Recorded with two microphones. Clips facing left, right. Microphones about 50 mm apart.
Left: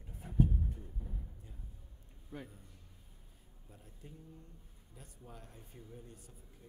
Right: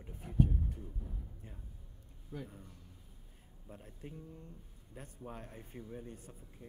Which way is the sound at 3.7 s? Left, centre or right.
Right.